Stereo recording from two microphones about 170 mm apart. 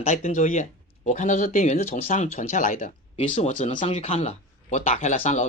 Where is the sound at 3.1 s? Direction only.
35° left (ahead or behind).